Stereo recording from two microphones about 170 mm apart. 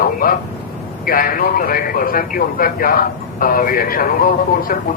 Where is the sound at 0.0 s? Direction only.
55° left (ahead or behind).